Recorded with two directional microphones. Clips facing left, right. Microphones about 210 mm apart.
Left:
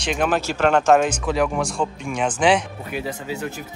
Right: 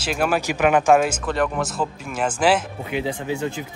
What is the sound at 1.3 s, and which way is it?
Speech, centre (ahead or behind).